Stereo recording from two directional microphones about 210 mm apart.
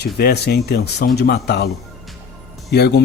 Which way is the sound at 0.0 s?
50° left (ahead or behind).